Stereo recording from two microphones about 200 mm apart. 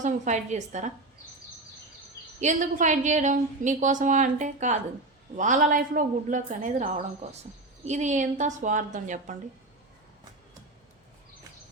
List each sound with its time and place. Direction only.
0.0 s a woman's voice: 35° right (ahead or behind)
2.4 s a woman's voice: 40° right (ahead or behind)